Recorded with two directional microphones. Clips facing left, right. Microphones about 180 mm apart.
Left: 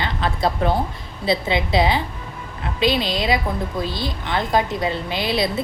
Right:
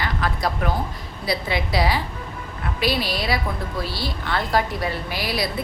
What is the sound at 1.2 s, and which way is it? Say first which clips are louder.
A woman's voice: left 4 dB; 25° left (ahead or behind).